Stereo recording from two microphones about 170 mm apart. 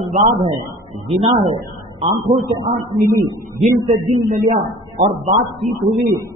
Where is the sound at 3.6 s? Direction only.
55° right (ahead or behind).